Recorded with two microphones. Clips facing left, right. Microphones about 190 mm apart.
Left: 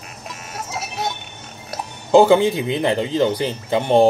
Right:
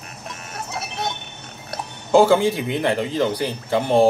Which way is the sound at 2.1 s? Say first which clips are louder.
Left 2 dB; 20° left (ahead or behind).